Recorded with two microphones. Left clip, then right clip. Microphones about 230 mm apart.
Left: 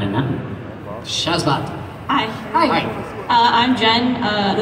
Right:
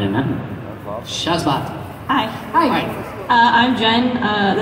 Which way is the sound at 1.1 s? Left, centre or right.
Left.